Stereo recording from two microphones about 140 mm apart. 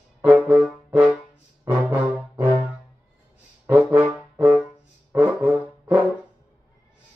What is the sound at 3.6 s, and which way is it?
Brass instrument, 10° right (ahead or behind).